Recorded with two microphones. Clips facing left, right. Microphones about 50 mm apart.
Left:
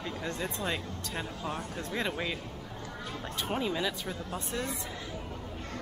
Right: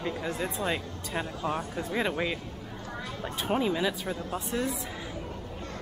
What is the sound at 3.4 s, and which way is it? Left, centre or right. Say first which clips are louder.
Speech: right 5 dB; centre.